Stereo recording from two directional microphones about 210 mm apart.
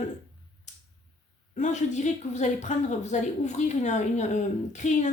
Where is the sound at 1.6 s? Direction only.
35° left (ahead or behind).